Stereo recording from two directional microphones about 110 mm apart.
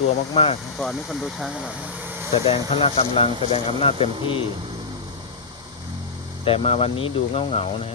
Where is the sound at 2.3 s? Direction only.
55° left (ahead or behind).